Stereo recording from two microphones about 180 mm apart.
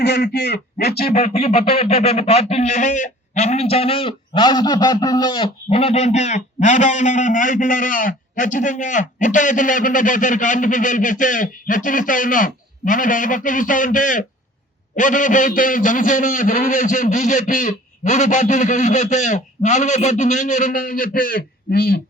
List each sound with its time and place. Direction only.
0.0 s a man's voice: 65° left (ahead or behind)
1.3 s a man's voice: 35° left (ahead or behind); by 22.0 s 55° left (ahead or behind)